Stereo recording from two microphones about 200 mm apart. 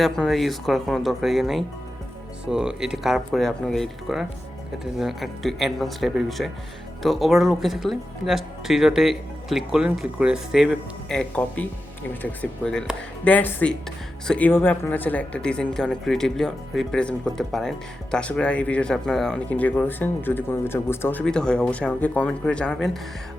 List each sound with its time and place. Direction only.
0.0 s speech: centre (ahead or behind)